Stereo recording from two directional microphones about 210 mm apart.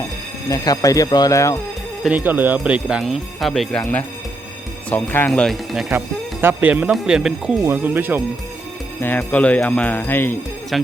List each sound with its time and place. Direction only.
0.5 s speech: 15° left (ahead or behind)
2.0 s speech: 5° right (ahead or behind)
6.4 s speech: 10° right (ahead or behind)
9.0 s speech: 10° left (ahead or behind)